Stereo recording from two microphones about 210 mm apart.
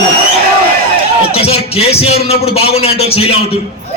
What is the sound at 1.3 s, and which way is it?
A man's voice, 30° left (ahead or behind).